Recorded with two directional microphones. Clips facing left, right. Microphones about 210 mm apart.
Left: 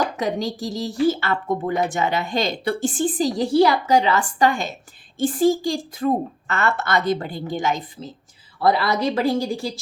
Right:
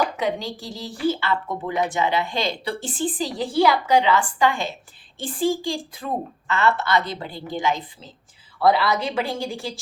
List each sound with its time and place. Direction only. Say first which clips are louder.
0.2 s a woman's voice: left 2 dB; 40° left (ahead or behind)